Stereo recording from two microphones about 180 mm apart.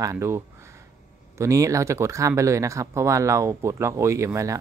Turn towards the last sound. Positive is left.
turn(degrees=-15)  # may be behind; listen again after turning